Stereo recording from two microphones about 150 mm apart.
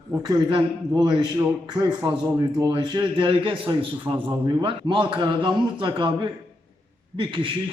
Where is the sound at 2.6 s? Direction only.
30° right (ahead or behind).